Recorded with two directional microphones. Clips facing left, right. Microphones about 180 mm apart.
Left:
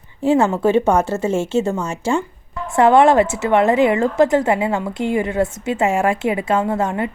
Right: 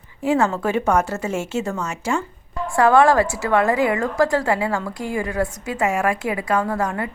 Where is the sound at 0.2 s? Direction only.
25° left (ahead or behind).